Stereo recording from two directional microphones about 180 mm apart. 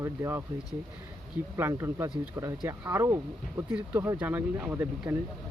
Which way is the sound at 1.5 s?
15° right (ahead or behind).